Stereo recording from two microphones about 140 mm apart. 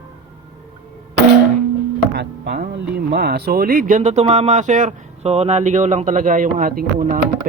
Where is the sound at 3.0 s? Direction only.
90° right.